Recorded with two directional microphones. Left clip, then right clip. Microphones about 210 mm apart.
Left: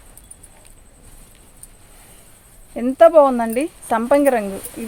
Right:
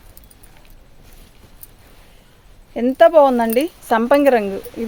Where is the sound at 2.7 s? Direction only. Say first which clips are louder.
Even; 45° right (ahead or behind).